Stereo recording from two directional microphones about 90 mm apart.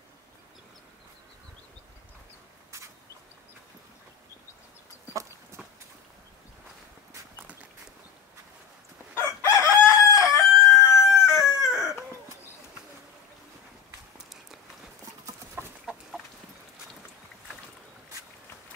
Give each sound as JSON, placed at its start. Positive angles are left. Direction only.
{"t": 9.1, "sound": "chicken", "side_deg": 30}
{"t": 11.3, "sound": "chicken", "side_deg": 0}
{"t": 14.1, "sound": "walk", "side_deg": -5}
{"t": 15.6, "sound": "chicken", "side_deg": -25}